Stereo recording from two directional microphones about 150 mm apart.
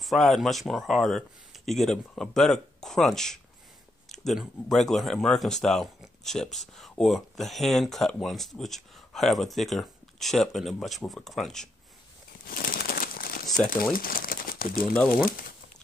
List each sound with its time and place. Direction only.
0.0 s speech: centre (ahead or behind)
12.4 s crumpling: 75° left (ahead or behind)
13.9 s speech: 70° left (ahead or behind)